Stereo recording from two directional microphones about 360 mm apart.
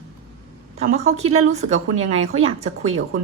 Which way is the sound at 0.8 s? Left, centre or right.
Centre.